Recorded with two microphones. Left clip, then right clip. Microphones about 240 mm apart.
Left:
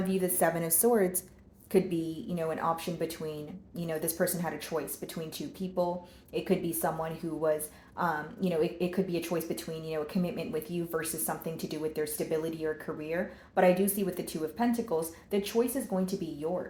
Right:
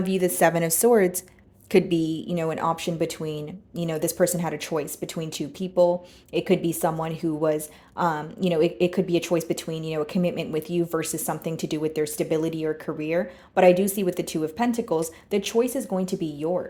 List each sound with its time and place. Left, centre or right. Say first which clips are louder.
0.1 s a woman's voice: right 9 dB; right